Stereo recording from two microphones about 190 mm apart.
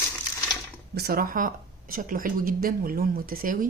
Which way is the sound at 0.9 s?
55° right (ahead or behind).